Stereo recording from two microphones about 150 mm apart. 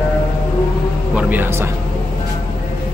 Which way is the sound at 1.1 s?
10° right (ahead or behind).